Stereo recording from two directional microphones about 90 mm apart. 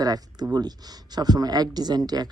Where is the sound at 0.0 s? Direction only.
45° right (ahead or behind).